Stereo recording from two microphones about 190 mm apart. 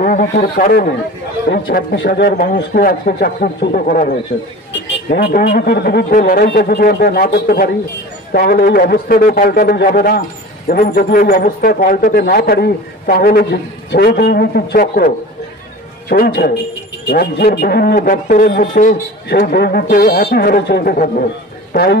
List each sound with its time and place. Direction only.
0.0 s a man's voice: 45° left (ahead or behind)
5.1 s a man's voice: 55° left (ahead or behind)